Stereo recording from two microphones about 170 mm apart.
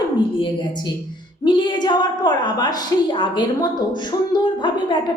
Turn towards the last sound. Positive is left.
turn(degrees=25)  # may be behind; listen again after turning